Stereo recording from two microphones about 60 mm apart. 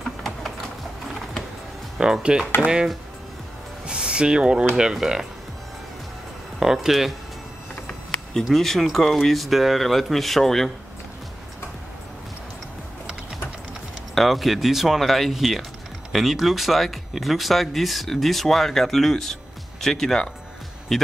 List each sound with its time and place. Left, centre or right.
0.2 s typing: centre
2.0 s speech: centre
6.6 s speech: centre
8.5 s speech: centre
14.1 s speech: centre